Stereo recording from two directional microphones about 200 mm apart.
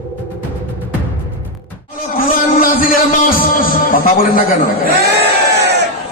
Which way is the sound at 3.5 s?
45° left (ahead or behind).